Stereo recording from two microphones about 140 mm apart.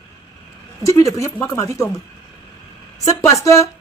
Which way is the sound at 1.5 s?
20° left (ahead or behind).